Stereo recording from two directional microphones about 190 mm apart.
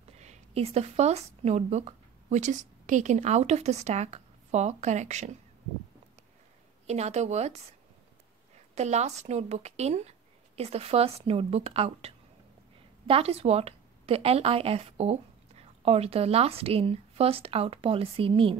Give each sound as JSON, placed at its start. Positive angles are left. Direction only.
{"t": 0.2, "sound": "speech", "side_deg": -35}
{"t": 6.9, "sound": "speech", "side_deg": -35}
{"t": 8.7, "sound": "a woman's voice", "side_deg": -35}